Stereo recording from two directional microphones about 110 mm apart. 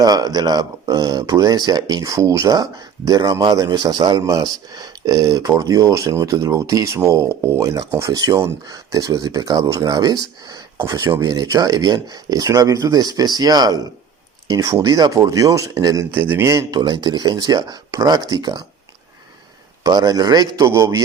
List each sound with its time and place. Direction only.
0.0 s speech: 35° right (ahead or behind)
11.3 s speech: 35° right (ahead or behind)
16.1 s speech: 20° right (ahead or behind); by 18.6 s 40° right (ahead or behind)
19.8 s speech: 40° right (ahead or behind)